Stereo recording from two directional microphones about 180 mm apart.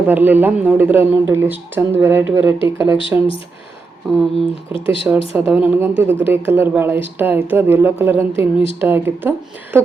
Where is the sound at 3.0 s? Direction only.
30° left (ahead or behind).